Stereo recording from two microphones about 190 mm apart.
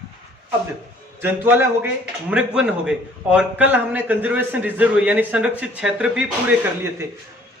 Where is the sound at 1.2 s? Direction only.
10° right (ahead or behind).